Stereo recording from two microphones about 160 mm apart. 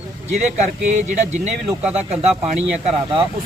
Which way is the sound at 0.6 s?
45° right (ahead or behind).